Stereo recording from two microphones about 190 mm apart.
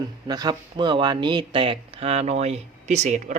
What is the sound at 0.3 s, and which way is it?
Speech, 20° right (ahead or behind).